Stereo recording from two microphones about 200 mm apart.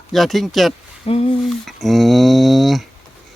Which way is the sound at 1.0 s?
30° left (ahead or behind).